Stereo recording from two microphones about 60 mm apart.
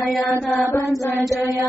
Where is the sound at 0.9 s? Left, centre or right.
Left.